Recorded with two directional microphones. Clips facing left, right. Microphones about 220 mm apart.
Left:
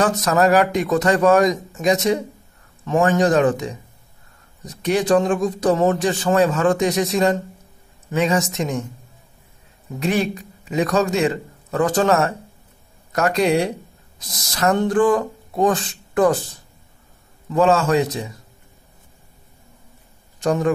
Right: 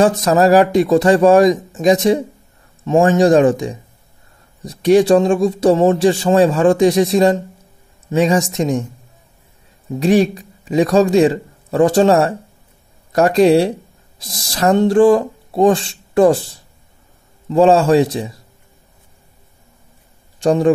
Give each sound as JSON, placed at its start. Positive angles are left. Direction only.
{"t": 0.0, "sound": "speech", "side_deg": -30}
{"t": 10.0, "sound": "speech", "side_deg": -30}
{"t": 20.3, "sound": "a man's voice", "side_deg": -30}